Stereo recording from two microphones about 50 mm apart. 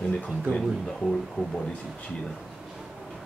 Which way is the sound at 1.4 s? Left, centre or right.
Right.